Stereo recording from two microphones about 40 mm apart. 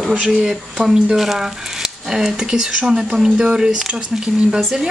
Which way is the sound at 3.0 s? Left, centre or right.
Centre.